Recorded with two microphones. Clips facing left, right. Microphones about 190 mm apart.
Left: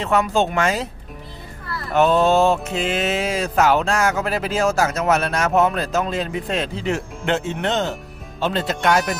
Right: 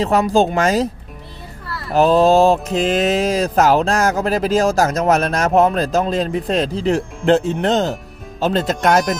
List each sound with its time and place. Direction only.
0.0 s music: 35° right (ahead or behind)
1.9 s music: 35° right (ahead or behind)
8.4 s speech: 40° right (ahead or behind)